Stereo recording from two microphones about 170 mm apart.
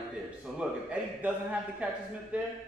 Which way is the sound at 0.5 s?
Centre (ahead or behind).